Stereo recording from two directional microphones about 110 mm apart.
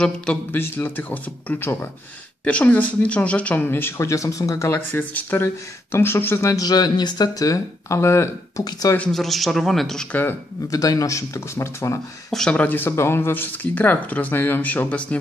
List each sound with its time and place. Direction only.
0.0 s speech: 10° left (ahead or behind)
0.6 s speech: 20° left (ahead or behind)
9.1 s a man's voice: centre (ahead or behind)
10.7 s speech: 30° left (ahead or behind)
12.3 s speech: 5° left (ahead or behind)